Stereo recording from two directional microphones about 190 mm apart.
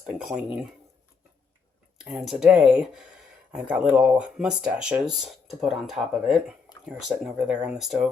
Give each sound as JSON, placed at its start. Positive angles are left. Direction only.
{"t": 0.0, "sound": "speech", "side_deg": -5}
{"t": 2.0, "sound": "speech", "side_deg": -5}